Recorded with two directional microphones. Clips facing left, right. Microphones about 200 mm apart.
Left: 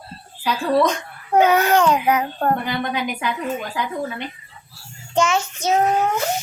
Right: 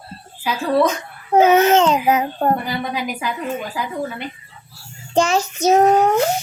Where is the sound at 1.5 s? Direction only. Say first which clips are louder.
Right 5 dB; 20° right (ahead or behind).